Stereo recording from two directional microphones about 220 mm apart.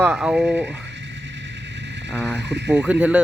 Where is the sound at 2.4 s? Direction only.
50° right (ahead or behind).